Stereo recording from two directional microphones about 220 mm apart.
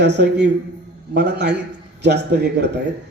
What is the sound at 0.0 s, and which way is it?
A man's voice, 50° right (ahead or behind).